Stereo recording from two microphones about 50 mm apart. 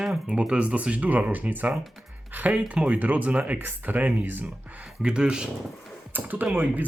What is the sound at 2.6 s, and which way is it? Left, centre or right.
Speech, centre.